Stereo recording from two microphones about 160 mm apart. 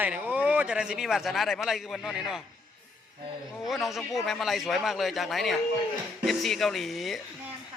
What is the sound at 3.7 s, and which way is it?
Speech, centre (ahead or behind).